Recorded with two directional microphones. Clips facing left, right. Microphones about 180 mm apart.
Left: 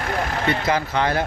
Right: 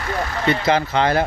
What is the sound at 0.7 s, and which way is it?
Speech, 30° right (ahead or behind).